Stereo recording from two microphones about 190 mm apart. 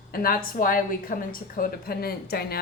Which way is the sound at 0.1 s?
50° left (ahead or behind).